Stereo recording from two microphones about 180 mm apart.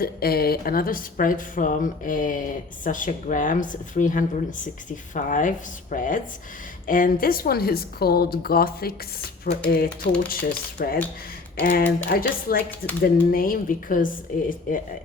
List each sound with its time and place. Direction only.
0.0 s a woman's voice: 55° left (ahead or behind)
12.0 s a woman's voice: 55° left (ahead or behind)